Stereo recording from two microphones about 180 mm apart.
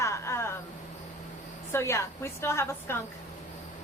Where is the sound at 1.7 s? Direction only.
15° left (ahead or behind).